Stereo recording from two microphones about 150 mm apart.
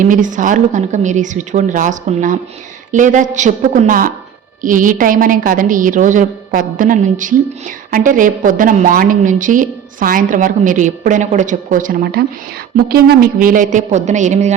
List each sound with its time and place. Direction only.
0.0 s a woman's voice: 60° right (ahead or behind)
12.7 s a woman's voice: 90° right; by 14.5 s 55° right (ahead or behind)